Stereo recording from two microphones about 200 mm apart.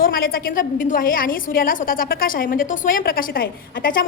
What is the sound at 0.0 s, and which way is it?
A woman's voice, 45° left (ahead or behind).